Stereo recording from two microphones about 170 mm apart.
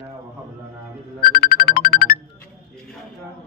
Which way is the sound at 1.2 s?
60° left (ahead or behind).